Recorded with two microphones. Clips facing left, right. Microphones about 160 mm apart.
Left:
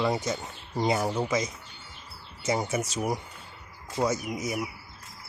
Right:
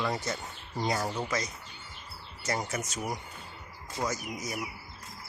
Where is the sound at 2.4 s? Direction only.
25° left (ahead or behind).